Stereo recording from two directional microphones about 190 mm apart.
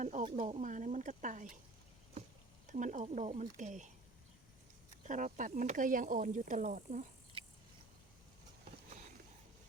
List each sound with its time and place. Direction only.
0.0 s speech: 40° right (ahead or behind)
2.6 s speech: 40° right (ahead or behind)
5.0 s speech: 40° right (ahead or behind)